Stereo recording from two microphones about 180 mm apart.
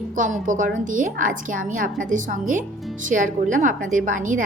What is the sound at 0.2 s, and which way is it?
A woman's voice, 45° right (ahead or behind).